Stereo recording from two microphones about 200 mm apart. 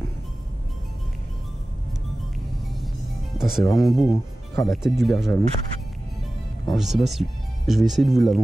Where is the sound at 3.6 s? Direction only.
15° left (ahead or behind).